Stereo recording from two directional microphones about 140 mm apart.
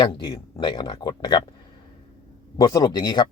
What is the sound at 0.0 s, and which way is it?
Speech, 30° left (ahead or behind).